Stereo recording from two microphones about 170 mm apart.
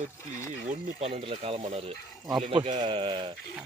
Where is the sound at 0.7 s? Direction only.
35° right (ahead or behind).